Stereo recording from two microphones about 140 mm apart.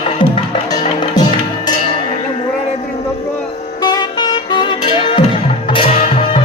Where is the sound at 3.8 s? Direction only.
30° left (ahead or behind).